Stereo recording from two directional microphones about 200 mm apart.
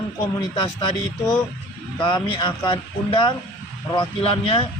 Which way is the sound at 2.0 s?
25° left (ahead or behind).